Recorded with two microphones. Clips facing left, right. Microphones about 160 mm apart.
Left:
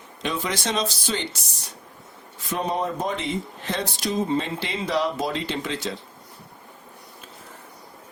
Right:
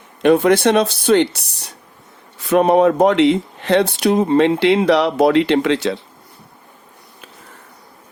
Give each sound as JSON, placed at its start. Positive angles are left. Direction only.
{"t": 0.2, "sound": "speech", "side_deg": -60}